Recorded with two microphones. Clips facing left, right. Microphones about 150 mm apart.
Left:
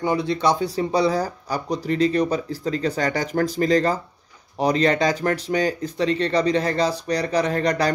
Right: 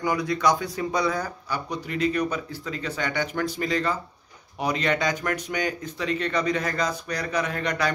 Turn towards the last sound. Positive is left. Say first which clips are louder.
# left 6 dB
turn(degrees=35)  # may be behind; listen again after turning